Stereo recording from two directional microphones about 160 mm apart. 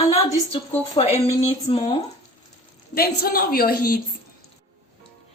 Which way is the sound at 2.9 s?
70° left (ahead or behind).